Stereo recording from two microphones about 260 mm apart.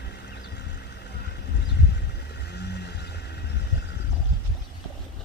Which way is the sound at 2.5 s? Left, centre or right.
Left.